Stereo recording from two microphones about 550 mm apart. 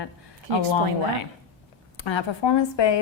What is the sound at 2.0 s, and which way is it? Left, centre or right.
Speech, left.